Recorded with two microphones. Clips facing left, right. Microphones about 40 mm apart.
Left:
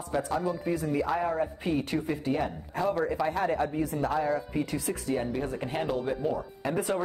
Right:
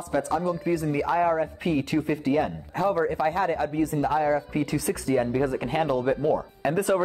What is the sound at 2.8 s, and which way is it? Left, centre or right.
Speech, centre.